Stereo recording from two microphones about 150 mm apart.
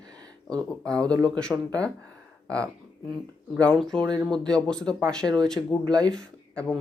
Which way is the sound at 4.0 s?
25° right (ahead or behind).